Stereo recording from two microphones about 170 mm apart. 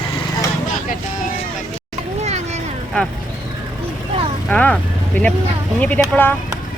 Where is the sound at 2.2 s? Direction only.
40° right (ahead or behind).